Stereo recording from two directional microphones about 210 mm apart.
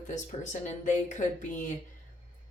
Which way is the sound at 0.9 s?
35° left (ahead or behind).